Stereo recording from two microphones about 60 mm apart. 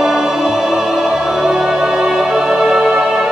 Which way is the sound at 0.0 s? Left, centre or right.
Centre.